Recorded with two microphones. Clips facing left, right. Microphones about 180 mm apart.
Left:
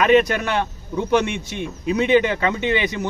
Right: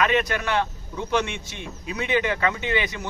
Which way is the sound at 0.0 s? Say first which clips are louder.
Left 7 dB; 20° left (ahead or behind).